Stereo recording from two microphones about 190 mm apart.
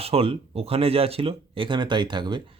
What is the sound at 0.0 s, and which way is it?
Speech, 30° right (ahead or behind).